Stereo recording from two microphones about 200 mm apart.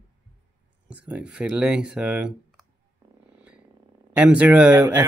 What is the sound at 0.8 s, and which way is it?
Speech, 5° right (ahead or behind).